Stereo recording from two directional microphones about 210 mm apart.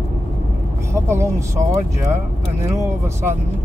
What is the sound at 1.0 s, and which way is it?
Speech, 15° right (ahead or behind).